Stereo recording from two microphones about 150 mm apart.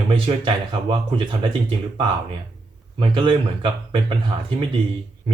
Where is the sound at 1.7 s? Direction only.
35° right (ahead or behind).